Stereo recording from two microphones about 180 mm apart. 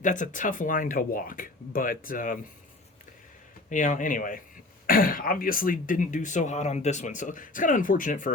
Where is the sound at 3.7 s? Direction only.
45° left (ahead or behind).